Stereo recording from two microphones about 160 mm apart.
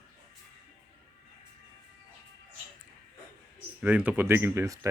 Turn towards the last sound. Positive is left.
turn(degrees=-15)  # may be behind; listen again after turning